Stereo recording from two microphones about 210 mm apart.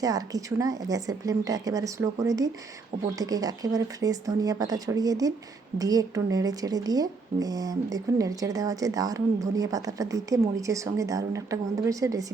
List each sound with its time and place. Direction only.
0.0 s speech: 15° right (ahead or behind)